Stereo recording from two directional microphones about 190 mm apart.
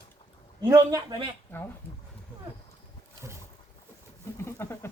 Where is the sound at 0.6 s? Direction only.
15° right (ahead or behind).